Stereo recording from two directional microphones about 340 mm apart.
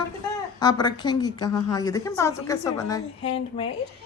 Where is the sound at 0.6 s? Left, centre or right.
Centre.